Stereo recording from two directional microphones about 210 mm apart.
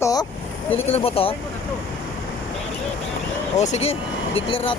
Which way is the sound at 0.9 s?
25° left (ahead or behind).